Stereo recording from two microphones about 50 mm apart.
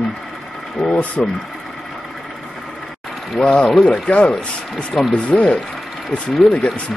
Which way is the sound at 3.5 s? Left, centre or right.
Left.